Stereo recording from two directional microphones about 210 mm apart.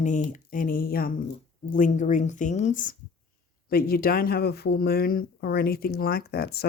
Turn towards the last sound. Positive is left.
turn(degrees=50)  # may be behind; listen again after turning